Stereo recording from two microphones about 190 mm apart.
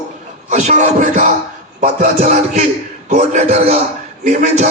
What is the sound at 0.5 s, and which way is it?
Music, 35° right (ahead or behind).